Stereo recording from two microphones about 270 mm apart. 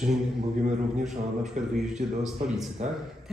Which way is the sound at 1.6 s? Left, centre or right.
Right.